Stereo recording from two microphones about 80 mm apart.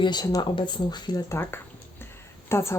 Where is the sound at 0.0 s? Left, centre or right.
Left.